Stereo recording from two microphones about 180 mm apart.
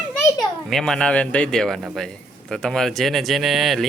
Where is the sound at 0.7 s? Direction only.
5° left (ahead or behind).